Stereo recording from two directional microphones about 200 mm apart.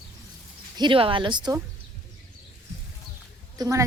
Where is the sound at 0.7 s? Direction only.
25° right (ahead or behind).